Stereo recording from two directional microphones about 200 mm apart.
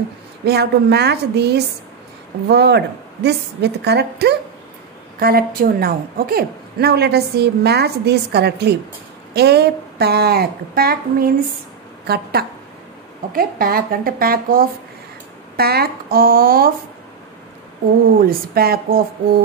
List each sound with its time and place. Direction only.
0.5 s a woman's voice: 55° right (ahead or behind)
18.2 s a woman's voice: 50° right (ahead or behind)